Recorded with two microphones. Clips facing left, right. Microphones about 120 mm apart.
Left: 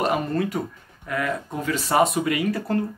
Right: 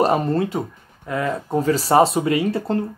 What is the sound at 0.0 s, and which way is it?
Speech, 30° right (ahead or behind).